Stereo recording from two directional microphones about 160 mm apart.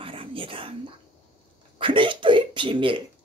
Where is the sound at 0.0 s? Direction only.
35° right (ahead or behind).